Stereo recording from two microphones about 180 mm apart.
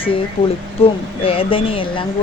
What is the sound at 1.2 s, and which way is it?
Speech, 30° left (ahead or behind).